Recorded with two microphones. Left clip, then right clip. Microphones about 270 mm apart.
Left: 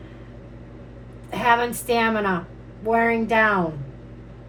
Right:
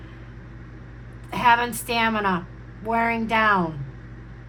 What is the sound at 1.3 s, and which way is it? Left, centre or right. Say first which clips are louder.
A woman's voice: right 1 dB; centre.